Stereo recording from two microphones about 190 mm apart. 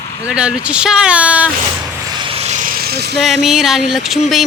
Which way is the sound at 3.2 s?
Centre (ahead or behind).